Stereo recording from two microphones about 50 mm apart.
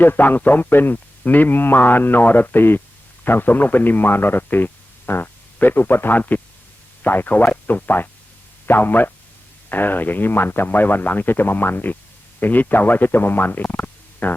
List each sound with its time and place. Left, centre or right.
0.0 s speech: left